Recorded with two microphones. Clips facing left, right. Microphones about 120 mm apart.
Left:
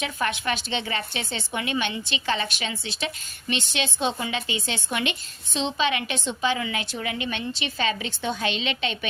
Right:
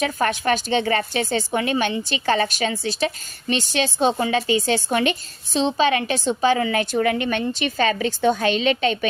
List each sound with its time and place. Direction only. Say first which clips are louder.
0.0 s a woman's voice: right 6 dB; 45° right (ahead or behind)